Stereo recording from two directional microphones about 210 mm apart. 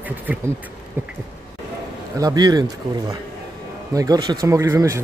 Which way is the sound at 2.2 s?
20° right (ahead or behind).